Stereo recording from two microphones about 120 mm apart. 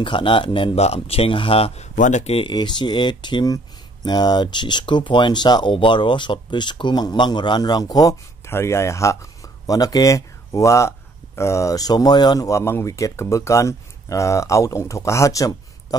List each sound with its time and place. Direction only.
0.0 s speech: 45° left (ahead or behind)
0.7 s speech: 60° left (ahead or behind)
2.0 s speech: 85° left
2.4 s speech: 40° left (ahead or behind)